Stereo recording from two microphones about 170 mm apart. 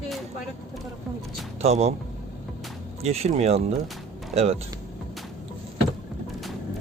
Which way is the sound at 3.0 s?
40° right (ahead or behind).